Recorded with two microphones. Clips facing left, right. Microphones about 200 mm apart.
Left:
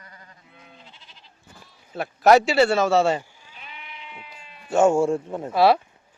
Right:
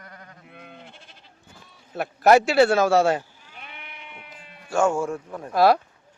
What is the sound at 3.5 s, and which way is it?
Sheep, 60° right (ahead or behind).